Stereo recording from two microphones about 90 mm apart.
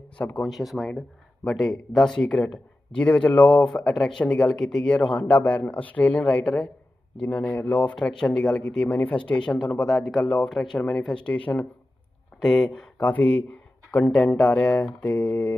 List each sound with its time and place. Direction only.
0.2 s speech: 15° left (ahead or behind)
0.4 s speech: centre (ahead or behind); by 15.5 s 15° left (ahead or behind)